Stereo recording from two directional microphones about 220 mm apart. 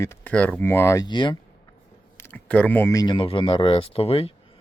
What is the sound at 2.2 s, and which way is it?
Speech, 5° left (ahead or behind).